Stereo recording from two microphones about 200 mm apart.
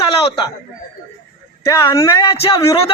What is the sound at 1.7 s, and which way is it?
Speech, 15° left (ahead or behind).